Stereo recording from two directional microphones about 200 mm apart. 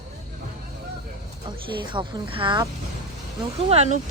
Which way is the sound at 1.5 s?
25° right (ahead or behind).